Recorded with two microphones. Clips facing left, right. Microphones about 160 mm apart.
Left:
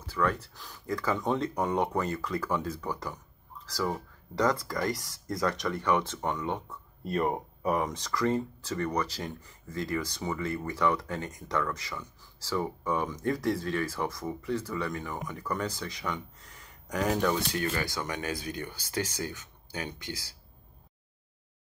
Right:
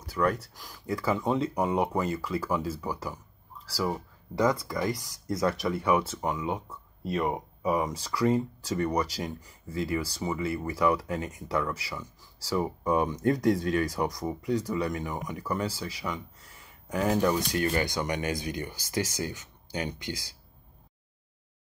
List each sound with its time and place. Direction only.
0.2 s speech: 20° right (ahead or behind)
0.6 s speech: 10° right (ahead or behind)
12.5 s speech: 20° right (ahead or behind); by 16.2 s 5° right (ahead or behind)
17.1 s speech: 15° right (ahead or behind)